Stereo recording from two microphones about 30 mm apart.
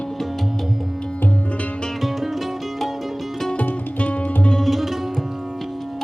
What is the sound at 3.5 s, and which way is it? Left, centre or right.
Music, left.